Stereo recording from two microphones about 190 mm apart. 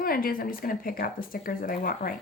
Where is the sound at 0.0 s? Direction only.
50° left (ahead or behind).